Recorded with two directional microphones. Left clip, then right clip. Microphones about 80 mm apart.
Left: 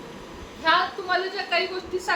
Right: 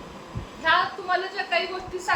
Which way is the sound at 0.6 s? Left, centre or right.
Left.